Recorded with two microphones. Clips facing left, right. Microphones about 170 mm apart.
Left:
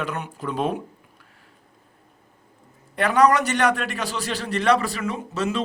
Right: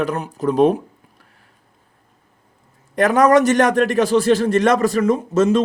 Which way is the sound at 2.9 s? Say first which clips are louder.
Right 5 dB; 45° right (ahead or behind).